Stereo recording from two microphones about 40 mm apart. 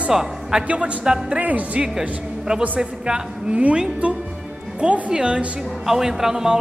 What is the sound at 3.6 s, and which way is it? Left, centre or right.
A woman's voice, right.